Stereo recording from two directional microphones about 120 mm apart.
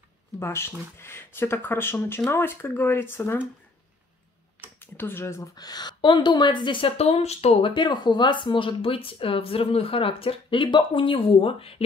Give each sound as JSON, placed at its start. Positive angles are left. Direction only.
{"t": 0.4, "sound": "speech", "side_deg": 20}
{"t": 4.7, "sound": "speech", "side_deg": 20}
{"t": 5.6, "sound": "speech", "side_deg": 35}
{"t": 7.0, "sound": "speech", "side_deg": 60}